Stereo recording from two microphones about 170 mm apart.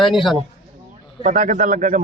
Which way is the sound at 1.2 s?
50° right (ahead or behind).